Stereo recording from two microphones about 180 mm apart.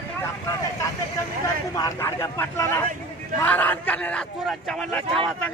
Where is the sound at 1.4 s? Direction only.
20° left (ahead or behind).